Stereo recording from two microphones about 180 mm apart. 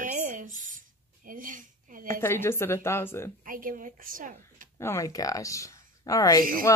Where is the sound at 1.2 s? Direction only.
50° right (ahead or behind).